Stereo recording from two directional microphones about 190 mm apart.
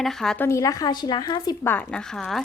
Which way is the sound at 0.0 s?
Centre (ahead or behind).